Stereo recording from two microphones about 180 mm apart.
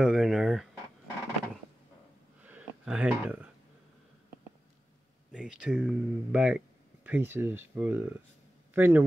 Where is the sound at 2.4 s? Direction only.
10° right (ahead or behind).